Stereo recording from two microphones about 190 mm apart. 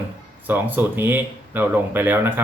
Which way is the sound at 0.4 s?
10° right (ahead or behind).